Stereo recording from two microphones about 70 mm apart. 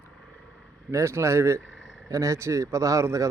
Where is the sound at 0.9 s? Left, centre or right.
Right.